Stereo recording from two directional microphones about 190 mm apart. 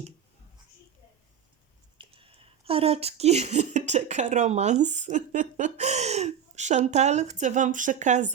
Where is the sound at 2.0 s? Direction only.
30° right (ahead or behind).